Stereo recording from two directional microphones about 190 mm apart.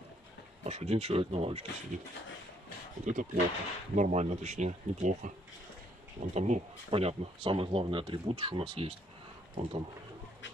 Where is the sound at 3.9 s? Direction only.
40° right (ahead or behind).